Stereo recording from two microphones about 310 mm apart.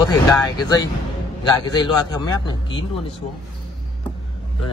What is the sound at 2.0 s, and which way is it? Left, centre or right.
Speech, centre.